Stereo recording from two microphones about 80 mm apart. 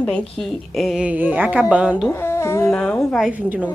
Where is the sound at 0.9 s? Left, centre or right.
Centre.